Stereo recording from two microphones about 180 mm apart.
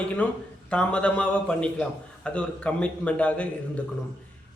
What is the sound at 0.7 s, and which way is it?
A man's voice, 5° left (ahead or behind).